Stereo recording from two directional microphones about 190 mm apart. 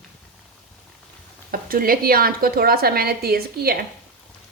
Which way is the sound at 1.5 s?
50° right (ahead or behind).